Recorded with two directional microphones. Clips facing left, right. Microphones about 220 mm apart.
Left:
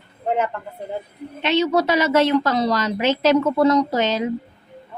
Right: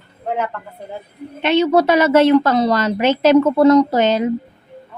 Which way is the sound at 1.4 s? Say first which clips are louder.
Right 4 dB; 55° right (ahead or behind).